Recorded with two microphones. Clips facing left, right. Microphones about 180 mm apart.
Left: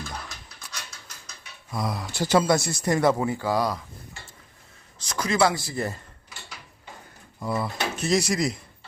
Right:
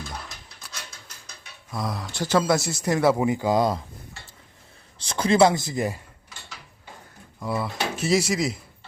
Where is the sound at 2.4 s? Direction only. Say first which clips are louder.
Even; centre (ahead or behind).